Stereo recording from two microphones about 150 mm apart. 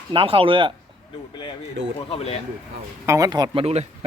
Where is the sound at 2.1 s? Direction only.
40° left (ahead or behind).